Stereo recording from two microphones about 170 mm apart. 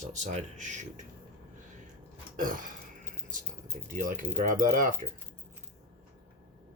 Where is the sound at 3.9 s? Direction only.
50° right (ahead or behind).